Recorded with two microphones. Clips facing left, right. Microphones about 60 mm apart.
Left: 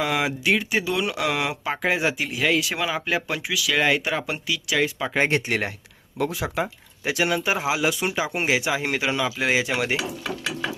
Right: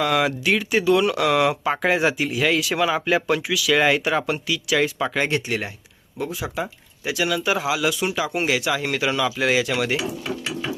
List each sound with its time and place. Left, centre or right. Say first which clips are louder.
0.0 s speech: right 3 dB; centre
5.3 s speech: left 1 dB; left
6.1 s speech: left 2 dB; left
6.6 s speech: left 1 dB; left; by 10.0 s centre